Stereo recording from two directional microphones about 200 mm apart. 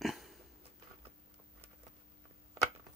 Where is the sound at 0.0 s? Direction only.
Centre (ahead or behind).